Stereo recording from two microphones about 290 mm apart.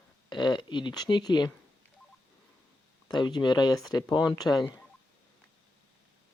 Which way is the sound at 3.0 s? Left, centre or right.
Centre.